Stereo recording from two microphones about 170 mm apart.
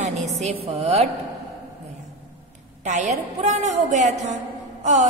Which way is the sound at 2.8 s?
45° right (ahead or behind).